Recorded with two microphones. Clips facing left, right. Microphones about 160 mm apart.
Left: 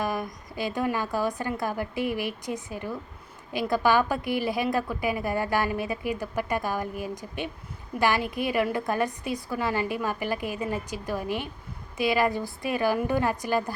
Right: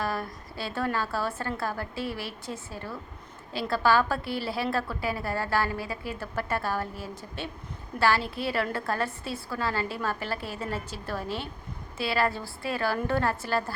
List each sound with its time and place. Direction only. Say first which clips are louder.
0.0 s a woman's voice: left 2 dB; 15° left (ahead or behind)